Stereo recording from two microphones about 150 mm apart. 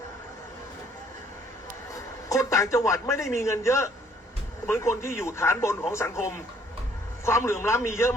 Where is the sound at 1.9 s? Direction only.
20° left (ahead or behind).